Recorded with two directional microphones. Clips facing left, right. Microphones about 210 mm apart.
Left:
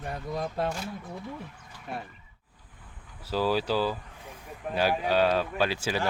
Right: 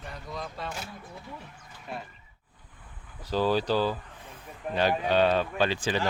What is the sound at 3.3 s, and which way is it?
Speech, 5° left (ahead or behind).